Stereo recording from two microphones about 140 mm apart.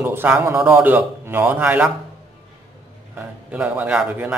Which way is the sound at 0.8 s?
15° right (ahead or behind).